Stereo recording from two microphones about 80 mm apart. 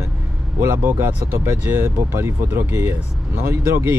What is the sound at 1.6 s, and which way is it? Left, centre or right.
Speech, right.